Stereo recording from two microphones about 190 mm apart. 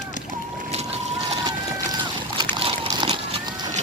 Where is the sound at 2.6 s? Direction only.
30° right (ahead or behind).